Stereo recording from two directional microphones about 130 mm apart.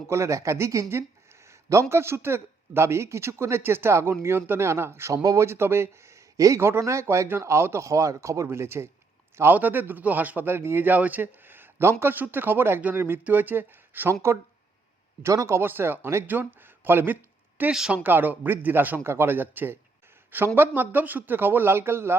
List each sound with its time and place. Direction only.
0.1 s speech: 20° right (ahead or behind)
17.6 s speech: 5° right (ahead or behind)